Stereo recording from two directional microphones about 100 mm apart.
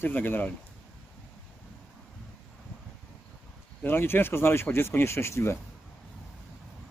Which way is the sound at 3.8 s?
20° left (ahead or behind).